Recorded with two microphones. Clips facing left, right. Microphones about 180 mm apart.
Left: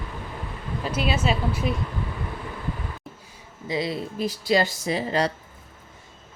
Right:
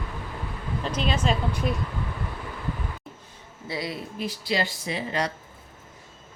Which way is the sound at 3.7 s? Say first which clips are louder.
Left 5 dB; 25° left (ahead or behind).